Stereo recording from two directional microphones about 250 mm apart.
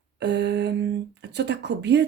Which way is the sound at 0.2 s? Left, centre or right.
Right.